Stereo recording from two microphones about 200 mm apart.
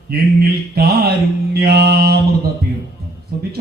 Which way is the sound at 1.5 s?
50° right (ahead or behind).